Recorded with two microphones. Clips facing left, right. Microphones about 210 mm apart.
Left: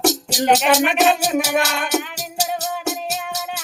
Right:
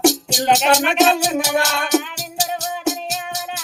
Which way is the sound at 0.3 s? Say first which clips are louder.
Even; 5° left (ahead or behind).